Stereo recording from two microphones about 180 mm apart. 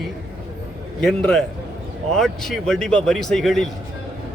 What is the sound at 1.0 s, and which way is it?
Speech, 5° left (ahead or behind).